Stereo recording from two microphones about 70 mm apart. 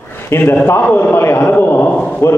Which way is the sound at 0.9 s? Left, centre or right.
Left.